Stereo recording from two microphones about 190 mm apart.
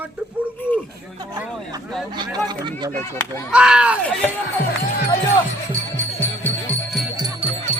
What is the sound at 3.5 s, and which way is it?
Speech, 5° right (ahead or behind).